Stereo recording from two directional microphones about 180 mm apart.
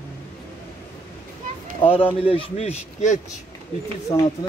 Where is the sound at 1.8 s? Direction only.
30° left (ahead or behind).